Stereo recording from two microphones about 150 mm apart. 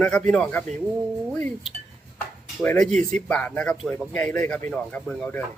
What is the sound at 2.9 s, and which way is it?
Speech, 55° right (ahead or behind).